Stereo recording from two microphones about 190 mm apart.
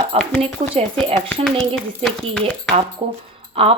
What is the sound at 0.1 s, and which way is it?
Speech, 30° right (ahead or behind).